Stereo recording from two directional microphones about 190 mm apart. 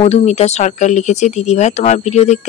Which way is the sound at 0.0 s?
35° left (ahead or behind).